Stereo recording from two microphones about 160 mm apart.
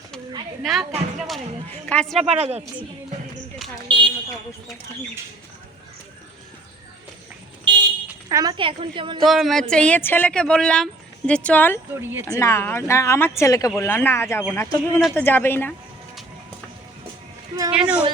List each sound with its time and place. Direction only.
0.6 s speech: centre (ahead or behind)
2.2 s speech: 40° right (ahead or behind)
3.8 s a sound: 30° right (ahead or behind)
7.7 s vehicle: 30° right (ahead or behind)
8.3 s a woman's voice: 25° right (ahead or behind)
9.2 s speech: centre (ahead or behind)
11.9 s speech: 15° right (ahead or behind)
12.2 s speech: 20° left (ahead or behind)
17.7 s speech: 5° right (ahead or behind)